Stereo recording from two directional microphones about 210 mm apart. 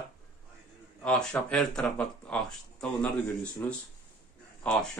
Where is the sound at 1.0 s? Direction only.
5° left (ahead or behind).